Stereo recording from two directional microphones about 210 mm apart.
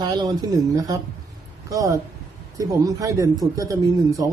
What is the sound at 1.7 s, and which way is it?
Speech, 15° right (ahead or behind).